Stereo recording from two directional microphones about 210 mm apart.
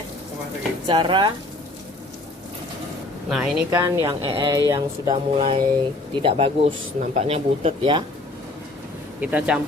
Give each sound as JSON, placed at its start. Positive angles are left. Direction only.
{"t": 0.9, "sound": "speech", "side_deg": -20}
{"t": 3.2, "sound": "speech", "side_deg": 0}
{"t": 3.7, "sound": "speech", "side_deg": -15}
{"t": 9.2, "sound": "speech", "side_deg": -5}